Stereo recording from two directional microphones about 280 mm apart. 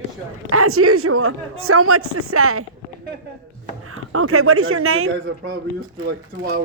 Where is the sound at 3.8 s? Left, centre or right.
Right.